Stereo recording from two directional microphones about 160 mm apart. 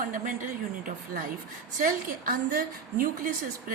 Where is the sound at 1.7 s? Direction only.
60° right (ahead or behind).